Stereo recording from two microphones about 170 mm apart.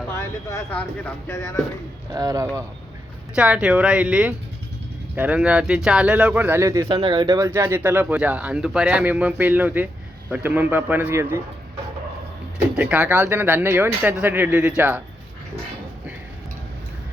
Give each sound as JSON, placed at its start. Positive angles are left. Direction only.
{"t": 0.1, "sound": "speech", "side_deg": 10}
{"t": 2.1, "sound": "speech", "side_deg": -20}
{"t": 3.3, "sound": "speech", "side_deg": -5}
{"t": 6.8, "sound": "speech", "side_deg": -30}
{"t": 12.7, "sound": "speech", "side_deg": -10}